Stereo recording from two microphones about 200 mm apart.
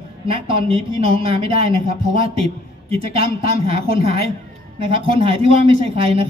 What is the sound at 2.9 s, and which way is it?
A man's voice, 30° right (ahead or behind).